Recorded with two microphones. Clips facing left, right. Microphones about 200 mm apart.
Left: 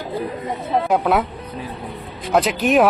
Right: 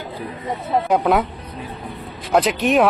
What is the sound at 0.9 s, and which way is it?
Speech, centre (ahead or behind).